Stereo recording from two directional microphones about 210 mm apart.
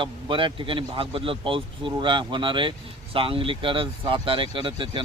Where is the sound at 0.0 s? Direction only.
25° right (ahead or behind).